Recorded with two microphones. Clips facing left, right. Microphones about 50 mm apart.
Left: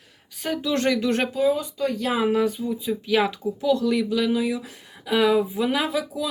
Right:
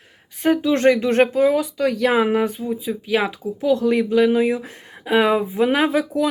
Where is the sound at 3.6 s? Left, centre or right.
Right.